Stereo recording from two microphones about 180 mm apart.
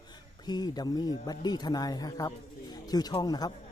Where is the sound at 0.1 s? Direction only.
25° left (ahead or behind).